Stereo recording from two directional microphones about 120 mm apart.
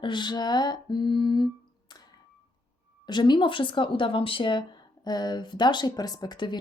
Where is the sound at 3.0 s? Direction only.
35° left (ahead or behind).